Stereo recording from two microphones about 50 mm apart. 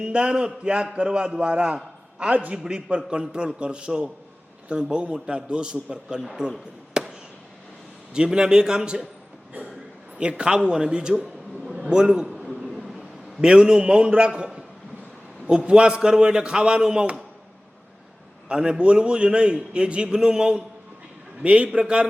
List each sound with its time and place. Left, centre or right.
0.0 s a man's voice: right
7.0 s fireworks: centre
8.1 s a man's voice: centre
10.2 s a man's voice: centre
13.4 s a man's voice: centre
18.4 s a man's voice: centre